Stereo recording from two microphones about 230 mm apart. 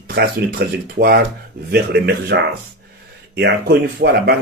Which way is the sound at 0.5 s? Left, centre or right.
Right.